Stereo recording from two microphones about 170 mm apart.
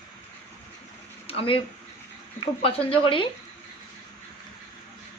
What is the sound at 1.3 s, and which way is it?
Speech, 35° left (ahead or behind).